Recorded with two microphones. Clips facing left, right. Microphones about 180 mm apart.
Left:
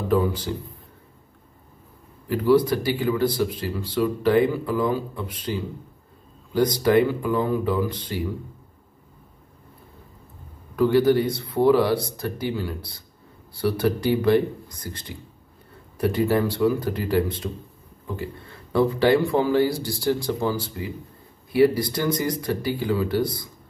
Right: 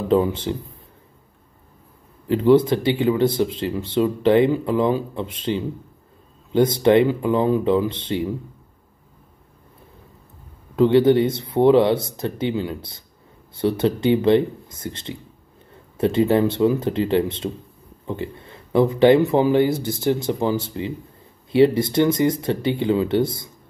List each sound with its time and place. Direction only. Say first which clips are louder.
0.1 s speech: right 4 dB; 25° right (ahead or behind)
2.2 s speech: right 4 dB; 25° right (ahead or behind)
10.8 s speech: right 4 dB; 25° right (ahead or behind)